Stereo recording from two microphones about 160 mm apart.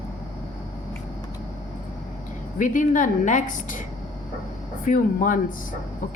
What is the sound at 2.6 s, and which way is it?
A woman's voice, 55° left (ahead or behind).